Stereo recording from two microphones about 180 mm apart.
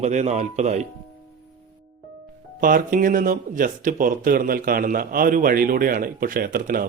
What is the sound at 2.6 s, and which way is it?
Speech, 50° right (ahead or behind).